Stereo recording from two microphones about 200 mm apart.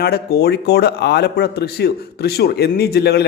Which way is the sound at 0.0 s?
50° left (ahead or behind).